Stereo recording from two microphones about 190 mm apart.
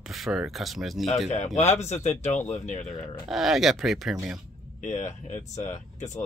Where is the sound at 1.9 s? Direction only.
35° left (ahead or behind).